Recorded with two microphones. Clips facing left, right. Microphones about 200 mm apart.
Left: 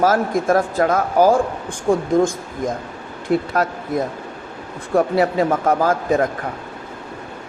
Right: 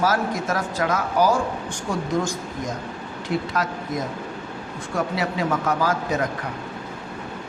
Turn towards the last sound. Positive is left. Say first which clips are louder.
# left 6 dB
turn(degrees=50)  # may be behind; listen again after turning